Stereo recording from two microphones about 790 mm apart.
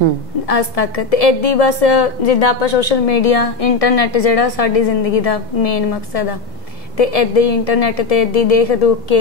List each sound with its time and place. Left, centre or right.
0.5 s a woman's voice: left